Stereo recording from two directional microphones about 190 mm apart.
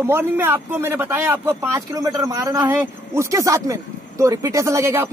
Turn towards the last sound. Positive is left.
turn(degrees=-15)  # may be behind; listen again after turning